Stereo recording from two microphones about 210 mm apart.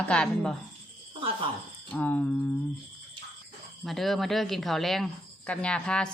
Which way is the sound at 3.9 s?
Centre (ahead or behind).